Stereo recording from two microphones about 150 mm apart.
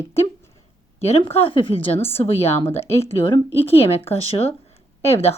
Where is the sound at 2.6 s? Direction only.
15° left (ahead or behind).